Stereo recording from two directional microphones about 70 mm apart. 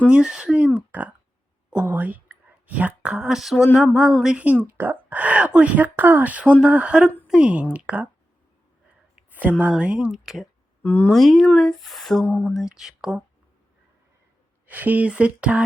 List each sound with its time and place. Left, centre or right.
0.1 s speech: centre
1.7 s whispering: right
3.1 s a sound: centre
3.9 s speech: centre
4.8 s a woman's voice: right
9.4 s a woman's voice: right
10.1 s speech: centre
10.8 s speech: left
11.1 s speech: centre
12.2 s speech: left
12.5 s speech: centre
14.7 s a woman's voice: right